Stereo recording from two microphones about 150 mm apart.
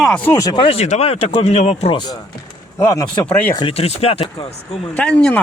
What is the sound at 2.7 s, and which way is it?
Speech, 20° left (ahead or behind).